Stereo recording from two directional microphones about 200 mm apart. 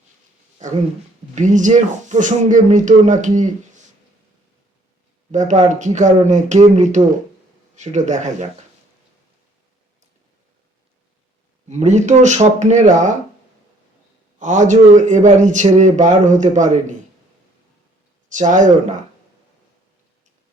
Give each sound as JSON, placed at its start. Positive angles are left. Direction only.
{"t": 0.6, "sound": "speech", "side_deg": -40}
{"t": 5.3, "sound": "speech", "side_deg": -35}
{"t": 11.7, "sound": "speech", "side_deg": -35}
{"t": 14.3, "sound": "speech", "side_deg": -35}
{"t": 18.3, "sound": "speech", "side_deg": -40}